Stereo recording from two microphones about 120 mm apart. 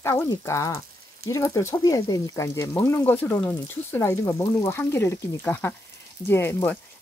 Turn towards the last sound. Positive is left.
turn(degrees=20)  # may be behind; listen again after turning